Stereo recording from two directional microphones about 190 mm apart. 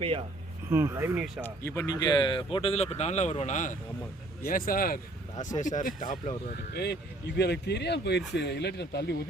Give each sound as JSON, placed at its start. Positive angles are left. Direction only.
{"t": 0.0, "sound": "speech", "side_deg": -30}
{"t": 0.7, "sound": "speech", "side_deg": -15}
{"t": 1.5, "sound": "speech", "side_deg": 10}